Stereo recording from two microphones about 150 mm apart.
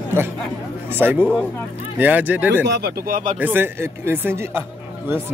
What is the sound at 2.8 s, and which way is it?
Speech, 75° right (ahead or behind).